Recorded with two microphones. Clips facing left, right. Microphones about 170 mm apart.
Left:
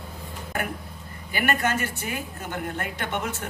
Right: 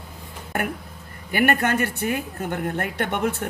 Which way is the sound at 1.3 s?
60° right (ahead or behind).